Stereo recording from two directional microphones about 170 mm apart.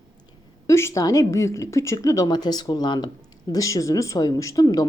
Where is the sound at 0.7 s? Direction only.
15° left (ahead or behind).